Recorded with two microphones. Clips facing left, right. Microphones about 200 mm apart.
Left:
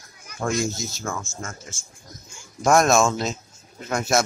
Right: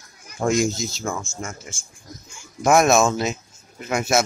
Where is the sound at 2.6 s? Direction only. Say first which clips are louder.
Right 1 dB; 5° right (ahead or behind).